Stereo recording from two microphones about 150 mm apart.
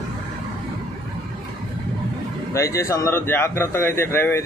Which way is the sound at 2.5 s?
20° left (ahead or behind).